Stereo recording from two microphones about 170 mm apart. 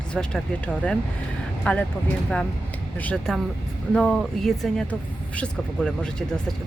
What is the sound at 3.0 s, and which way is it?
Speech, 5° left (ahead or behind).